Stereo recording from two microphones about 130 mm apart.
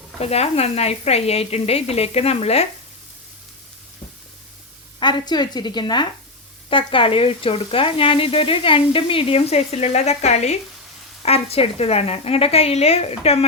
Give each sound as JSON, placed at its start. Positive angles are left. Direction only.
{"t": 0.2, "sound": "speech", "side_deg": 55}
{"t": 4.9, "sound": "a woman's voice", "side_deg": 35}